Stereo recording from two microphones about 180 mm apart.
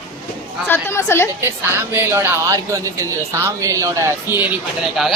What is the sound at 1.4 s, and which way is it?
Speech, 10° right (ahead or behind).